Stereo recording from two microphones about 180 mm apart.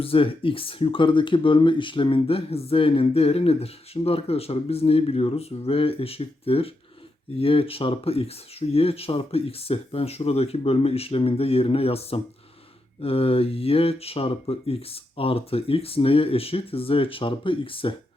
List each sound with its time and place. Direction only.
0.0 s speech: 30° left (ahead or behind)